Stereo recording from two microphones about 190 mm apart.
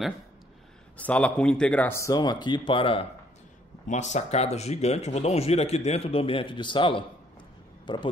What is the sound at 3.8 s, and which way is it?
Speech, 40° left (ahead or behind).